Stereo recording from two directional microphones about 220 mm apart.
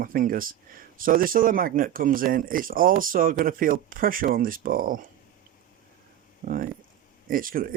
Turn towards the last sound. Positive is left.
turn(degrees=-40)  # may be behind; listen again after turning